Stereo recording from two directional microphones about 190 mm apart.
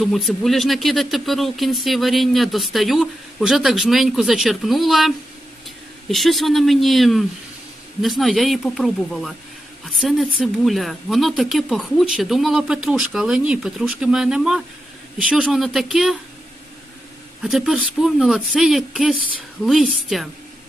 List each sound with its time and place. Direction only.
0.0 s a woman's voice: centre (ahead or behind)
17.4 s speech: centre (ahead or behind)